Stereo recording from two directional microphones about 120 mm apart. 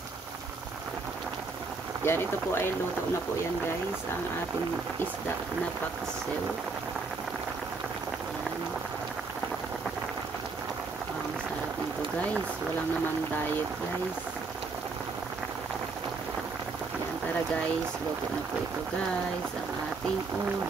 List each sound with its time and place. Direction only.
2.0 s speech: 20° left (ahead or behind)